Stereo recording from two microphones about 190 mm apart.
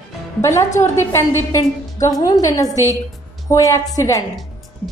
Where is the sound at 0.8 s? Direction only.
15° left (ahead or behind).